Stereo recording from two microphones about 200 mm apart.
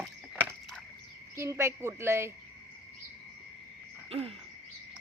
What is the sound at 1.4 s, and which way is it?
Speech, 15° right (ahead or behind).